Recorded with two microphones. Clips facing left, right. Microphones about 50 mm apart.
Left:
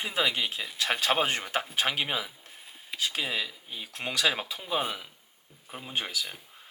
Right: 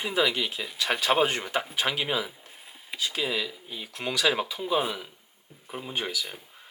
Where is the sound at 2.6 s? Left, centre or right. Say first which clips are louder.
Right 1 dB; centre.